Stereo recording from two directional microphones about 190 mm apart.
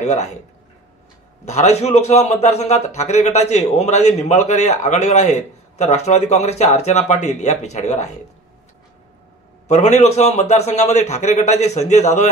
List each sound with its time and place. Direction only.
0.0 s a man's voice: 35° left (ahead or behind)
1.4 s a man's voice: 35° left (ahead or behind)
9.7 s a man's voice: 35° left (ahead or behind)